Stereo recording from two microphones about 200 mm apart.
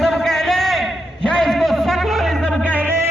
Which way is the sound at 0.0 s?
Centre (ahead or behind).